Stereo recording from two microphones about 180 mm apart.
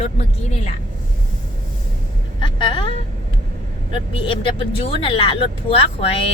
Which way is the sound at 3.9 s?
30° left (ahead or behind).